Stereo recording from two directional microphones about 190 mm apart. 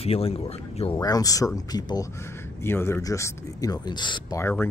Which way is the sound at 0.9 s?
20° left (ahead or behind).